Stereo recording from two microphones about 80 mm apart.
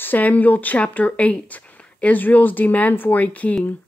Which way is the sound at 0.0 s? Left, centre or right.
Left.